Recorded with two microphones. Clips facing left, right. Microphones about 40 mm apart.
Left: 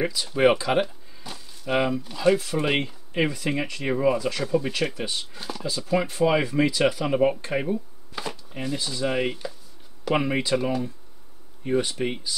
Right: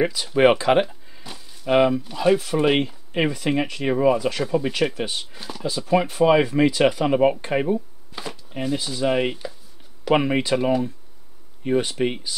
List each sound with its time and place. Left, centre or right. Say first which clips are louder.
0.0 s speech: right 3 dB; right
0.8 s a sound: right 1 dB; centre
1.7 s speech: right 6 dB; right
4.9 s speech: right 3 dB; right
5.3 s speech: left 1 dB; centre
5.6 s speech: right 4 dB; right